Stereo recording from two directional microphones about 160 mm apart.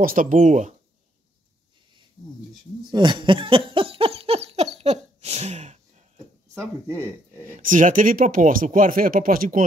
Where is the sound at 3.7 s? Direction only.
35° right (ahead or behind).